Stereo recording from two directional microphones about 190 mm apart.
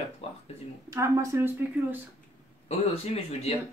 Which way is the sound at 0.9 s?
15° right (ahead or behind).